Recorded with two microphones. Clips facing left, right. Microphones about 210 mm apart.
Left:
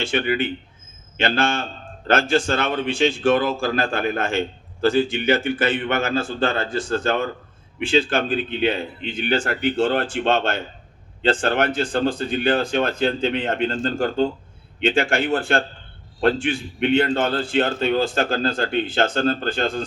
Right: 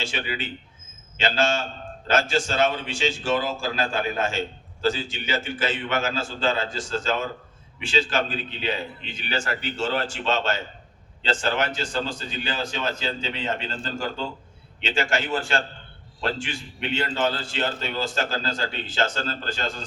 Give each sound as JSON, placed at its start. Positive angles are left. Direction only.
{"t": 0.0, "sound": "a man's voice", "side_deg": 55}